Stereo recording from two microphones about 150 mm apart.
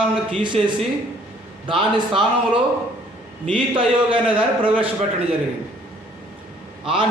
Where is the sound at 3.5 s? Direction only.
35° right (ahead or behind).